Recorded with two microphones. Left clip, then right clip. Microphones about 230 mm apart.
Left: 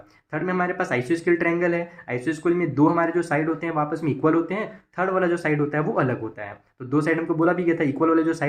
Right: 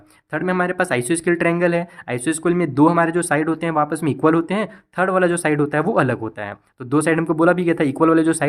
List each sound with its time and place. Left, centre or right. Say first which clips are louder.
0.3 s speech: right 4 dB; right